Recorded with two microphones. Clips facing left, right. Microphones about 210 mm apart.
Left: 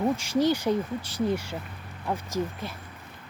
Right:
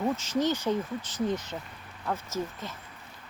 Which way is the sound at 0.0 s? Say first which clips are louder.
Left 3 dB; 10° left (ahead or behind).